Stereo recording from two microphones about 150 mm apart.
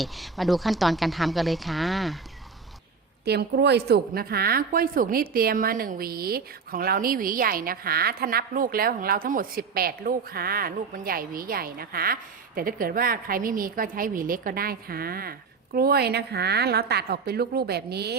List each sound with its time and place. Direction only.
0.0 s speech: centre (ahead or behind)
3.2 s a woman's voice: 90° right